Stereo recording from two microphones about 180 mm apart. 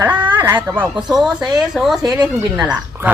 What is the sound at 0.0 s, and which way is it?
Speech, 10° right (ahead or behind).